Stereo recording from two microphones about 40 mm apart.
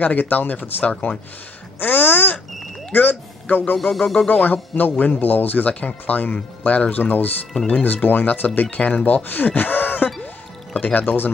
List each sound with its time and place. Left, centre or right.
0.0 s speech: left
1.8 s speech: left
3.7 s a sound: centre
4.3 s speech: left
8.6 s speech: left
9.6 s a sound: left
10.2 s music: left